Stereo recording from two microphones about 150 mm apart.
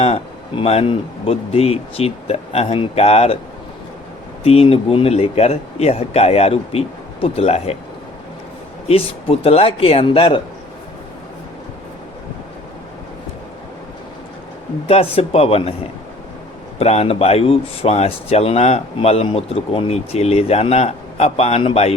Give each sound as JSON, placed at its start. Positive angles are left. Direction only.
{"t": 0.0, "sound": "speech", "side_deg": 40}
{"t": 4.4, "sound": "speech", "side_deg": 40}
{"t": 8.9, "sound": "a man's voice", "side_deg": 40}
{"t": 14.8, "sound": "a man's voice", "side_deg": 40}
{"t": 16.7, "sound": "speech", "side_deg": 45}